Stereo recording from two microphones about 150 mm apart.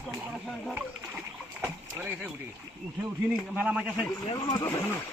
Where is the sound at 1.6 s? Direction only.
10° right (ahead or behind).